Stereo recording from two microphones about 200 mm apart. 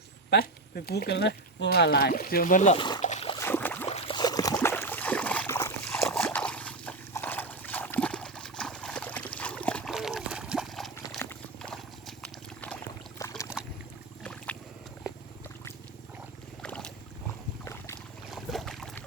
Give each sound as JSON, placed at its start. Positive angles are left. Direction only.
{"t": 0.3, "sound": "speech", "side_deg": 50}
{"t": 2.7, "sound": "speech", "side_deg": 25}
{"t": 3.0, "sound": "a sound", "side_deg": 35}
{"t": 3.3, "sound": "boat", "side_deg": 10}
{"t": 3.8, "sound": "a sound", "side_deg": 30}
{"t": 13.1, "sound": "rowboat", "side_deg": 15}
{"t": 16.6, "sound": "boat", "side_deg": 5}
{"t": 18.3, "sound": "boat", "side_deg": 0}